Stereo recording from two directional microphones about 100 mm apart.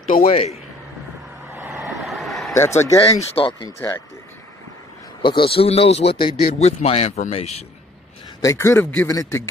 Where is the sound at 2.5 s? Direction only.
25° left (ahead or behind).